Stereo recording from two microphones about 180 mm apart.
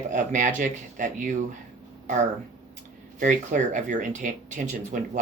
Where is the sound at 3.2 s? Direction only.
45° right (ahead or behind).